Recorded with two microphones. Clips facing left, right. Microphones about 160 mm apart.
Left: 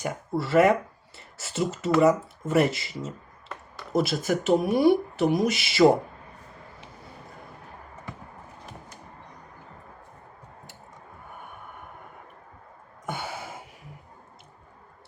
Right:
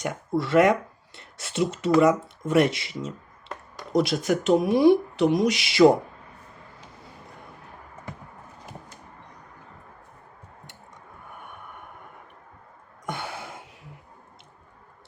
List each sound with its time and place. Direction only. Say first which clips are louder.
0.0 s speech: right 2 dB; centre (ahead or behind)
13.1 s gasp: even; 5° left (ahead or behind)